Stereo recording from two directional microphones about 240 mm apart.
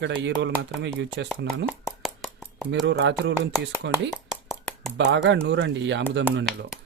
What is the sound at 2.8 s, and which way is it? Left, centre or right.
Speech, right.